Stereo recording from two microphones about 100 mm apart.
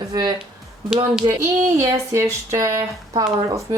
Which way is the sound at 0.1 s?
50° right (ahead or behind).